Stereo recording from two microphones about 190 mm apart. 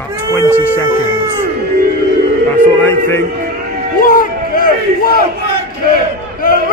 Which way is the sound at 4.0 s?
45° left (ahead or behind).